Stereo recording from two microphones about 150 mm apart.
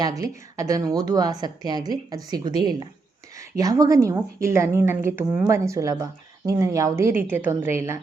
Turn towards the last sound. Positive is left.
turn(degrees=-15)  # may be behind; listen again after turning